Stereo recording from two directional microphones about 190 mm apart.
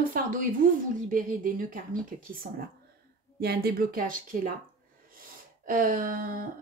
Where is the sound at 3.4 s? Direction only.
55° right (ahead or behind).